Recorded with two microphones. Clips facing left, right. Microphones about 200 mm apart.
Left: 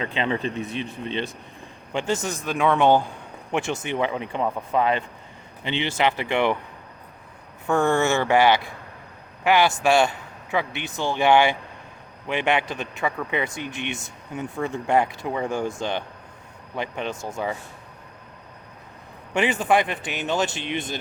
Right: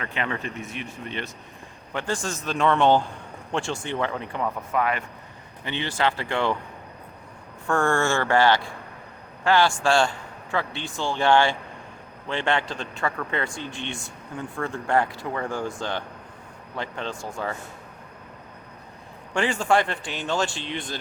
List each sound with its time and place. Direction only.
0.0 s a man's voice: 20° left (ahead or behind)
7.7 s a man's voice: 20° left (ahead or behind)
19.3 s speech: 20° left (ahead or behind)